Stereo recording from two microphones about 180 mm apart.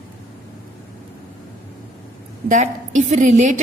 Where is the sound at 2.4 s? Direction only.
40° right (ahead or behind).